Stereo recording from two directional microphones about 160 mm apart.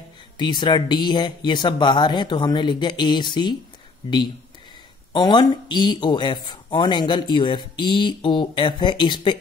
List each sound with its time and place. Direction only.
0.4 s speech: 30° left (ahead or behind)
5.1 s speech: 25° left (ahead or behind)